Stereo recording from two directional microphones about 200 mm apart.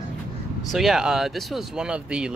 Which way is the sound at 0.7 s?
Centre (ahead or behind).